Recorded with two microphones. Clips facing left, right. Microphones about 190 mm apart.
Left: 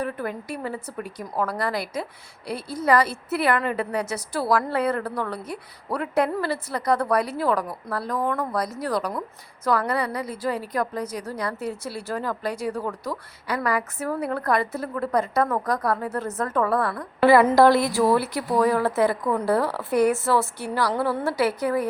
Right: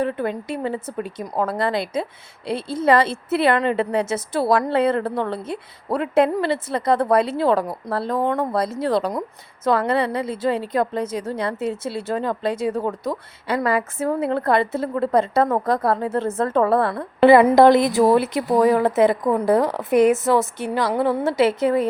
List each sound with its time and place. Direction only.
0.0 s speech: 25° right (ahead or behind)